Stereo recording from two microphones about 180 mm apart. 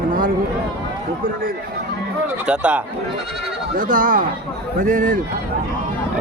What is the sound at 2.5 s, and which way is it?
Speech, 5° right (ahead or behind).